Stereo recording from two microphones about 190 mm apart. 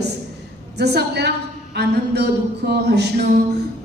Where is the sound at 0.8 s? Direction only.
60° right (ahead or behind).